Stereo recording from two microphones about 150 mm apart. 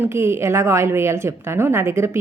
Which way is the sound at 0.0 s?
15° right (ahead or behind).